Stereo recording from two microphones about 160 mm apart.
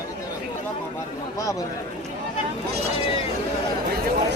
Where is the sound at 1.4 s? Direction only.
20° left (ahead or behind).